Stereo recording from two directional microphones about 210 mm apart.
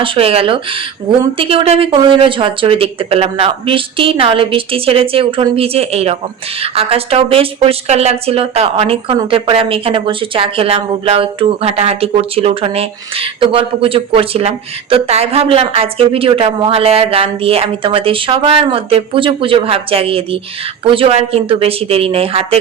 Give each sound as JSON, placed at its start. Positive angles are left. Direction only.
{"t": 0.0, "sound": "a woman's voice", "side_deg": -25}